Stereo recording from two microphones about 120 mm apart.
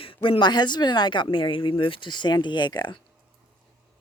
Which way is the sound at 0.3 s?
40° left (ahead or behind).